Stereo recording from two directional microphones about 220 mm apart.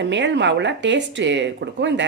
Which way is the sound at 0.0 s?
55° right (ahead or behind).